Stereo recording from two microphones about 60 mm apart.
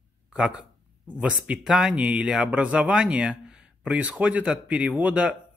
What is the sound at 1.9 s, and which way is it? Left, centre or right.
Speech, right.